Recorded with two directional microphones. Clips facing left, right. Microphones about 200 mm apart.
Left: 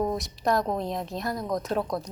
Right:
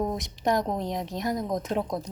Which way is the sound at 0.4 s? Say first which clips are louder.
Even; 15° right (ahead or behind).